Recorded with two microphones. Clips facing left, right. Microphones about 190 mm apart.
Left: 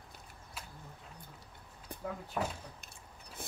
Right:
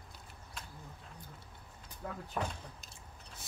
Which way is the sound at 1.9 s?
55° left (ahead or behind).